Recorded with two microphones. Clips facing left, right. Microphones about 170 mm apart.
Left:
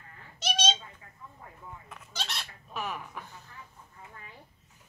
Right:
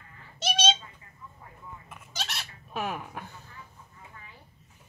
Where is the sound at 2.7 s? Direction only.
55° right (ahead or behind).